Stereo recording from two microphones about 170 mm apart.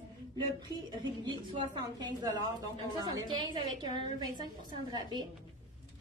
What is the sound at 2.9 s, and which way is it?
A woman's voice, 25° right (ahead or behind).